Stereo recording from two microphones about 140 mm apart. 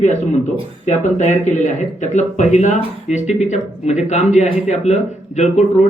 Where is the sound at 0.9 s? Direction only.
55° left (ahead or behind).